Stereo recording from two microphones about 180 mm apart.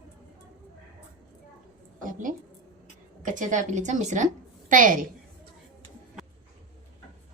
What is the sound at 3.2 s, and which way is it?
A woman's voice, 45° right (ahead or behind).